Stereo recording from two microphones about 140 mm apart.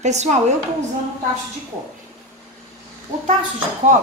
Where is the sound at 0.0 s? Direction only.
55° right (ahead or behind).